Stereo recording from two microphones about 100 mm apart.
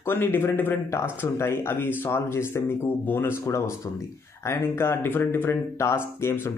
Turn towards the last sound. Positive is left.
turn(degrees=25)  # may be behind; listen again after turning